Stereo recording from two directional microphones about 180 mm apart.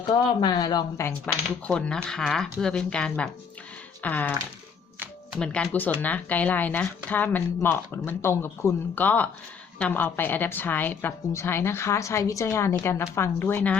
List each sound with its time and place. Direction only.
0.0 s speech: 25° left (ahead or behind)
1.6 s a woman's voice: 5° left (ahead or behind)
5.4 s a woman's voice: 5° left (ahead or behind)